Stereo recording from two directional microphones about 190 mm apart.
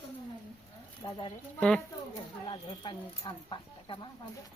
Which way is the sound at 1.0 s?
25° left (ahead or behind).